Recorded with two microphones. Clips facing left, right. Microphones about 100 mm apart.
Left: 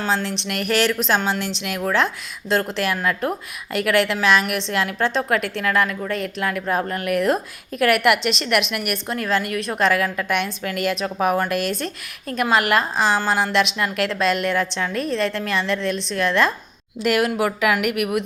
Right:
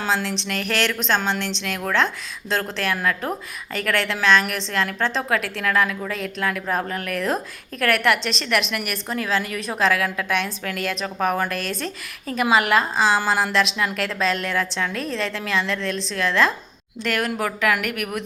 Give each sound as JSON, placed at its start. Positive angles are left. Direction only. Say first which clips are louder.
{"t": 0.0, "sound": "a woman's voice", "louder": "left 1 dB", "side_deg": 0}